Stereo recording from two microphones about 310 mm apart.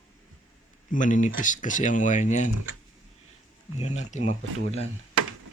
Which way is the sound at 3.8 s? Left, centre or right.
Left.